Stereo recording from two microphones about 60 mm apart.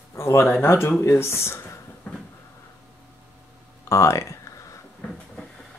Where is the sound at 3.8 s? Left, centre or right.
Left.